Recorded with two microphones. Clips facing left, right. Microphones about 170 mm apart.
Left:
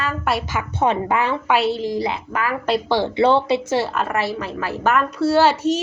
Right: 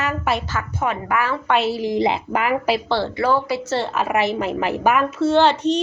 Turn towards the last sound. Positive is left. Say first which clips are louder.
# even
turn(degrees=5)  # may be behind; listen again after turning